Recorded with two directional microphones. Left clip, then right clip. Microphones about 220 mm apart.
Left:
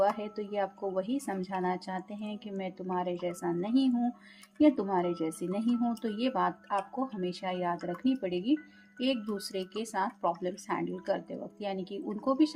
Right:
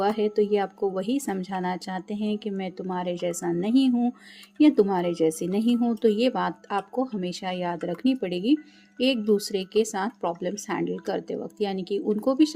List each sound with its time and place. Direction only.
0.0 s speech: 45° right (ahead or behind)